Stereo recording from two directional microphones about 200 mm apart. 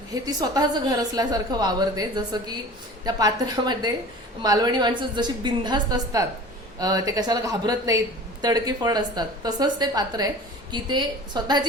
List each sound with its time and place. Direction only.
0.1 s a woman's voice: 20° right (ahead or behind)